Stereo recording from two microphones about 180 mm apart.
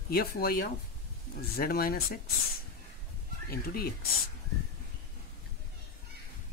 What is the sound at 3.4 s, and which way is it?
Speech, 55° left (ahead or behind).